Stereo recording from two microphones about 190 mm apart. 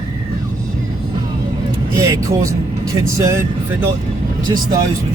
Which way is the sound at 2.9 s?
15° right (ahead or behind).